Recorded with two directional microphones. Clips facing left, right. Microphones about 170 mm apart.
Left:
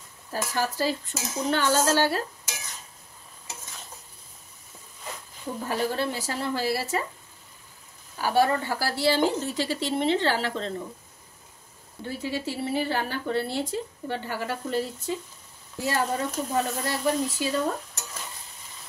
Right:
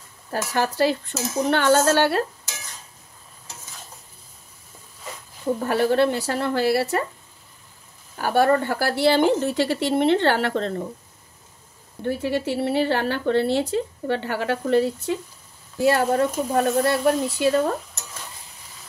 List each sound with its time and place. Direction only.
0.3 s a woman's voice: 65° right (ahead or behind)
5.7 s a woman's voice: 70° right (ahead or behind)
8.2 s a woman's voice: 55° right (ahead or behind)
12.1 s a woman's voice: 65° right (ahead or behind)